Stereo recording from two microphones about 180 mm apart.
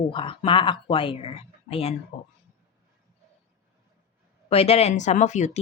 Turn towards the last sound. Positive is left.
turn(degrees=40)  # may be behind; listen again after turning